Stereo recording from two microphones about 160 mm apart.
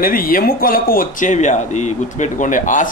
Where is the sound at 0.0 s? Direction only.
65° left (ahead or behind).